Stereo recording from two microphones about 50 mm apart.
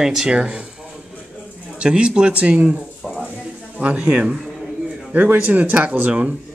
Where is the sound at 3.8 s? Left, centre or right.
Right.